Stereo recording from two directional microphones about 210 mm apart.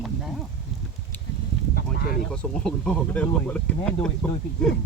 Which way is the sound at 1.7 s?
45° left (ahead or behind).